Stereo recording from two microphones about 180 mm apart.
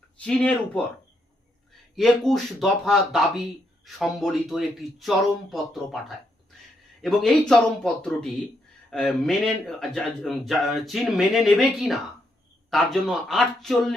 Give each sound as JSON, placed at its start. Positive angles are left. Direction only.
{"t": 0.2, "sound": "speech", "side_deg": 5}
{"t": 2.0, "sound": "speech", "side_deg": 0}